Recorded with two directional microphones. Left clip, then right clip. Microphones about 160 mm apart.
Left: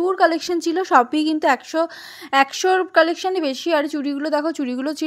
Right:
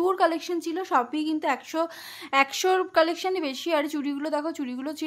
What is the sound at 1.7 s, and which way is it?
A woman's voice, 25° left (ahead or behind).